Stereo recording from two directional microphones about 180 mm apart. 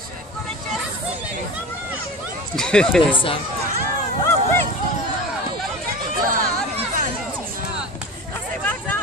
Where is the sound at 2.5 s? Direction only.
5° left (ahead or behind).